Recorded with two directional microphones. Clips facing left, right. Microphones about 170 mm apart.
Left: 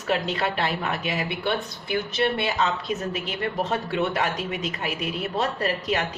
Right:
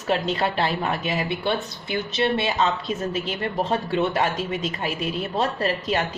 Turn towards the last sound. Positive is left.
turn(degrees=-30)  # may be behind; listen again after turning